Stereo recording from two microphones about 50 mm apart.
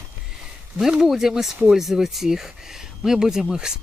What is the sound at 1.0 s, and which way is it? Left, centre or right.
Speech, centre.